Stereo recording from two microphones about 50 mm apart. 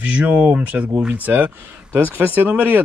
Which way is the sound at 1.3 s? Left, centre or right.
Right.